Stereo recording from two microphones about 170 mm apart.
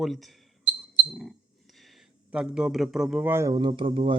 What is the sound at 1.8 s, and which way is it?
Speech, centre (ahead or behind).